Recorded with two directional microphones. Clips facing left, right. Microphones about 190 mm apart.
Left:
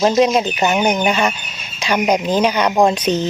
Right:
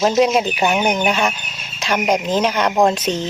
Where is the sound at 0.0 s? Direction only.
5° right (ahead or behind).